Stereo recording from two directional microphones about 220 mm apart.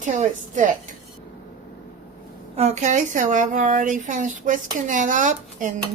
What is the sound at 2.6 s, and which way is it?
Speech, 30° right (ahead or behind).